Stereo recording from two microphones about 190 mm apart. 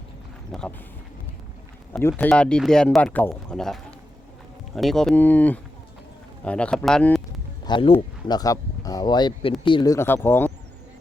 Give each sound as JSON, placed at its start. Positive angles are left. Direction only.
{"t": 0.5, "sound": "speech", "side_deg": 0}
{"t": 1.9, "sound": "speech", "side_deg": 10}
{"t": 7.6, "sound": "speech", "side_deg": 25}